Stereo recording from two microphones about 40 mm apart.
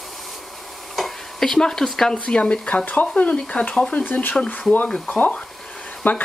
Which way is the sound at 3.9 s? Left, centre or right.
Left.